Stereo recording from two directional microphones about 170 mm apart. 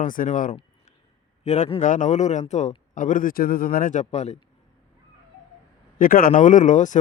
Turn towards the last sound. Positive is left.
turn(degrees=45)  # may be behind; listen again after turning